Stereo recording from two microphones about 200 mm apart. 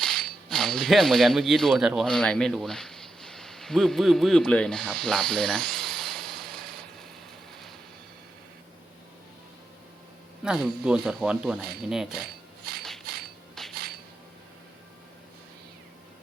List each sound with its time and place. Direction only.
0.0 s speech: 5° left (ahead or behind)
10.4 s speech: 5° right (ahead or behind)
12.2 s cutlery: 50° right (ahead or behind)
13.6 s a sound: centre (ahead or behind)